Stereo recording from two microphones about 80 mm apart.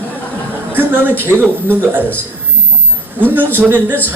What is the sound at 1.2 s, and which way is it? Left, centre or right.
Speech, right.